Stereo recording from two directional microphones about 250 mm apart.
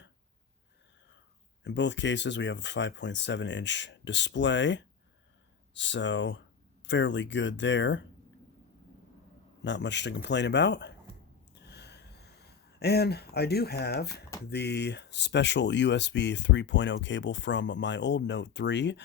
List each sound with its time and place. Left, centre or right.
1.6 s speech: left
9.6 s speech: left
11.5 s a sound: left
12.8 s speech: left